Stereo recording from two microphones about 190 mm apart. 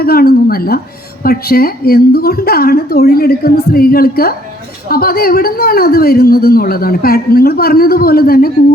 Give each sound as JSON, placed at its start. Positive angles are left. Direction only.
{"t": 0.0, "sound": "a woman's voice", "side_deg": 55}